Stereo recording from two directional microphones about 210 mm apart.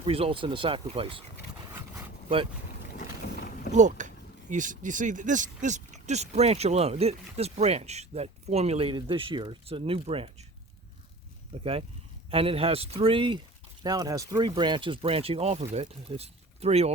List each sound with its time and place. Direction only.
0.0 s speech: 25° right (ahead or behind)
3.7 s speech: 35° right (ahead or behind)
11.6 s speech: 25° right (ahead or behind)